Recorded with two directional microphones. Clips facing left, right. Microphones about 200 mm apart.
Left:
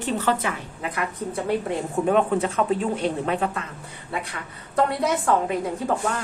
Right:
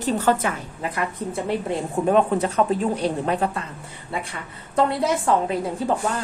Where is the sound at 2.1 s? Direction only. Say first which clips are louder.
Right 2 dB; 40° right (ahead or behind).